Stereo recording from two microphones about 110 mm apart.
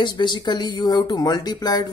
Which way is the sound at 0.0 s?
45° left (ahead or behind).